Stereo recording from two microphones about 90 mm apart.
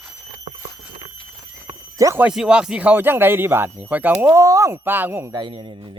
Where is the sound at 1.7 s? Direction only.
35° right (ahead or behind).